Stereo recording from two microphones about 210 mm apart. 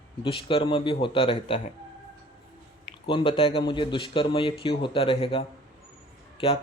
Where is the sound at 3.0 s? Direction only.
25° left (ahead or behind).